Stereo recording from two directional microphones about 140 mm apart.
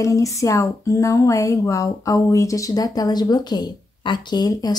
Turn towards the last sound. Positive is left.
turn(degrees=30)  # may be behind; listen again after turning